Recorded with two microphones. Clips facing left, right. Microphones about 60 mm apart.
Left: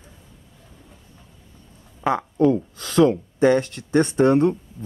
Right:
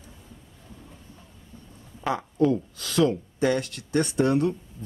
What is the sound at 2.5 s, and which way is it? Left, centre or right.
Speech, left.